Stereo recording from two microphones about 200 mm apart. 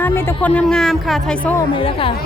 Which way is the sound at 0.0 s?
10° left (ahead or behind).